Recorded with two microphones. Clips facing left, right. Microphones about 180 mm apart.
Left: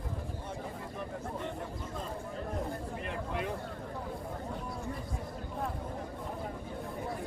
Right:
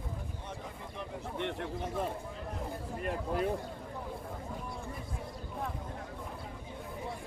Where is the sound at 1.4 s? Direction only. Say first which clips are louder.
Right 3 dB; 65° right (ahead or behind).